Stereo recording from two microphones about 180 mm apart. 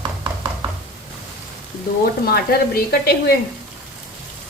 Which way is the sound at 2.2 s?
60° left (ahead or behind).